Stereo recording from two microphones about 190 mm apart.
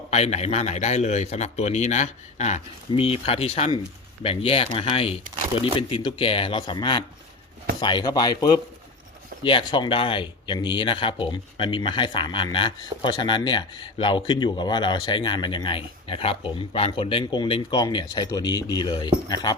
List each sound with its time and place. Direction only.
0.1 s a man's voice: 35° left (ahead or behind)